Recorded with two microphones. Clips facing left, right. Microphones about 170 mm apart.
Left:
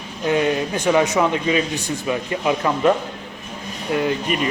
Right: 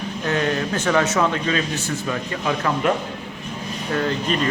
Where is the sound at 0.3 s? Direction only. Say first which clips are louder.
Left 3 dB; 15° left (ahead or behind).